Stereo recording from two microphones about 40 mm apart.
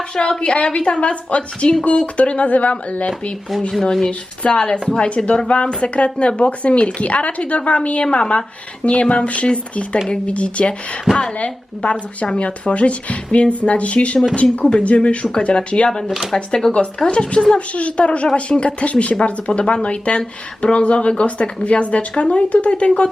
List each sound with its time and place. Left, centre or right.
0.2 s a woman's voice: left
4.0 s a woman's voice: left
14.6 s a woman's voice: left
16.0 s speech: centre
16.3 s speech: centre
17.1 s a woman's voice: left